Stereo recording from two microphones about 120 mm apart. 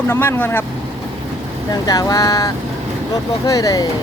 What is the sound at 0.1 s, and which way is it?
Speech, 20° left (ahead or behind).